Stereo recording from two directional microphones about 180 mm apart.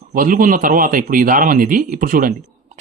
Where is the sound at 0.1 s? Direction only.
50° right (ahead or behind).